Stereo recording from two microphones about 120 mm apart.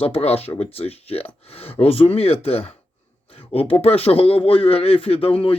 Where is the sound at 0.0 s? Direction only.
55° left (ahead or behind).